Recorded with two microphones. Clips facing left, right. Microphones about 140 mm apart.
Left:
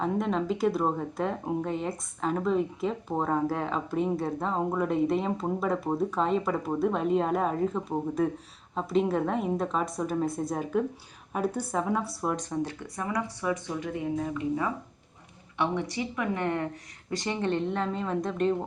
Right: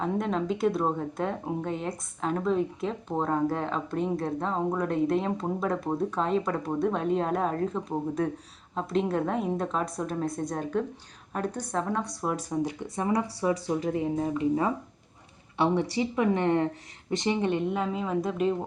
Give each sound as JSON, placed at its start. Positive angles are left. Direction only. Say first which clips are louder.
{"t": 0.0, "sound": "speech", "louder": "even", "side_deg": 0}
{"t": 13.0, "sound": "speech", "louder": "right 4 dB", "side_deg": -30}